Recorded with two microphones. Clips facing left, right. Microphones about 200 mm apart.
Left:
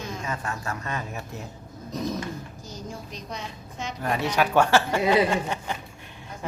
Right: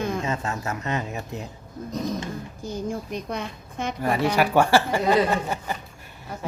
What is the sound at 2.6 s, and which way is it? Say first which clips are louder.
A woman's voice: right 11 dB; 55° right (ahead or behind).